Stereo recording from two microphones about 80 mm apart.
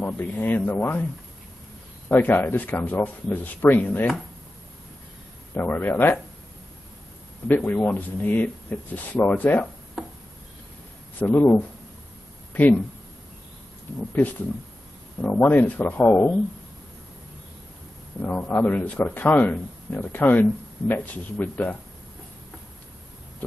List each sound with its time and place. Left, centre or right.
0.0 s speech: left
2.0 s speech: left
5.5 s speech: left
7.4 s speech: left
11.1 s speech: left
15.2 s speech: left
18.2 s speech: left